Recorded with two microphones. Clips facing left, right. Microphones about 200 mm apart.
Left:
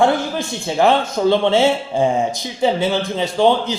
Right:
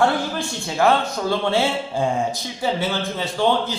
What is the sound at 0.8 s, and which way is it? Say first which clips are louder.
A man's voice: left 3 dB; 20° left (ahead or behind).